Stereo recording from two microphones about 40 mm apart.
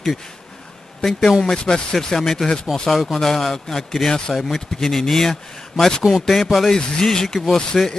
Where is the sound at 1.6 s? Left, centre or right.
Centre.